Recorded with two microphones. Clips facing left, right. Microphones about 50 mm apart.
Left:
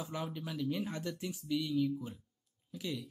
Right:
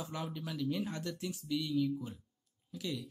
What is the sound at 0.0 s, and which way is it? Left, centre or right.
Speech, centre.